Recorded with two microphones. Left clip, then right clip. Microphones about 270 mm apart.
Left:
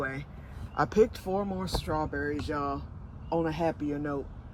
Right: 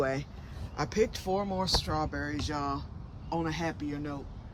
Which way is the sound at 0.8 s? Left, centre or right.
Centre.